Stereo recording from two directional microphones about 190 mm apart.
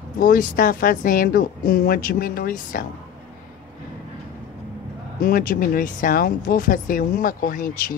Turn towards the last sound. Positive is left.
turn(degrees=45)  # may be behind; listen again after turning